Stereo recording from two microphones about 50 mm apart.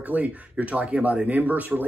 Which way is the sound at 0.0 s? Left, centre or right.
Right.